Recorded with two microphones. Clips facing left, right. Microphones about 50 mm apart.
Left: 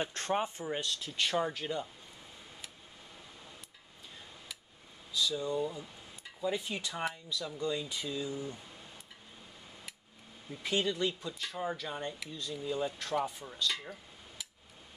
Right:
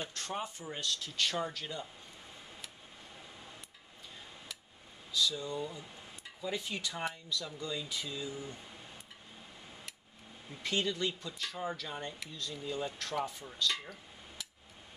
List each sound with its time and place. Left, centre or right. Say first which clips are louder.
0.0 s speech: left 6 dB; left
5.1 s speech: left 2 dB; centre
10.6 s speech: left 2 dB; centre